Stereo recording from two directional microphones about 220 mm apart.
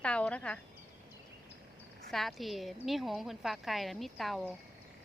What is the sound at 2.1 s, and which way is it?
A woman's voice, centre (ahead or behind).